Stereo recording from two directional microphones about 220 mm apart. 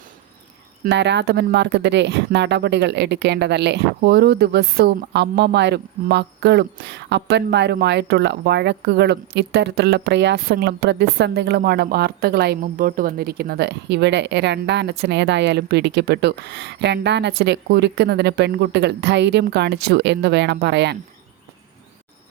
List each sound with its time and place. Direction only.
0.9 s speech: 50° right (ahead or behind)